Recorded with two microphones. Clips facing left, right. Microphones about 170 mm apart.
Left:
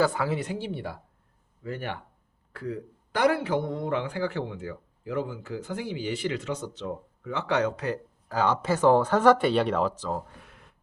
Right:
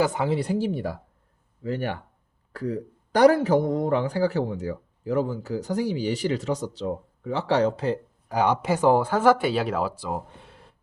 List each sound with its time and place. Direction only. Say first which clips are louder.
0.0 s speech: right 2 dB; 20° right (ahead or behind)
0.3 s a man's voice: right 7 dB; 40° right (ahead or behind)
8.3 s speech: right 3 dB; 15° right (ahead or behind); by 10.8 s 30° right (ahead or behind)